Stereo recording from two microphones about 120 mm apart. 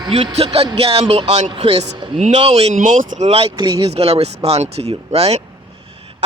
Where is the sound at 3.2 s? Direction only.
55° right (ahead or behind).